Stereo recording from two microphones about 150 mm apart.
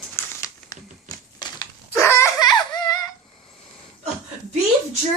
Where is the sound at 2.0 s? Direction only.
20° left (ahead or behind).